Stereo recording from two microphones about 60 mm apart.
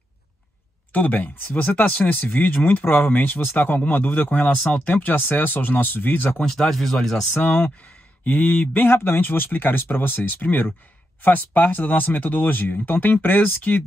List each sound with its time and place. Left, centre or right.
0.9 s speech: left
6.3 s speech: centre
7.4 s speech: left